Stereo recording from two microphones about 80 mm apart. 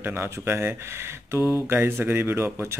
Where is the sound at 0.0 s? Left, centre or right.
Right.